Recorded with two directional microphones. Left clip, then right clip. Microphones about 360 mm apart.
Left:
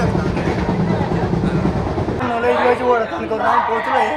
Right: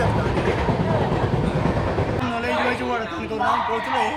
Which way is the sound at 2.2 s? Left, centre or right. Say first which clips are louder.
Left 9 dB; centre.